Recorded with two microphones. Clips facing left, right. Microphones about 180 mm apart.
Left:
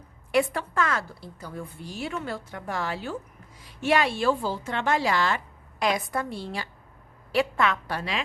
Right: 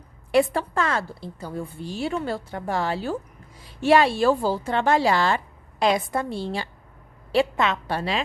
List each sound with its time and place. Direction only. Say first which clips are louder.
0.3 s a woman's voice: right 4 dB; 30° right (ahead or behind)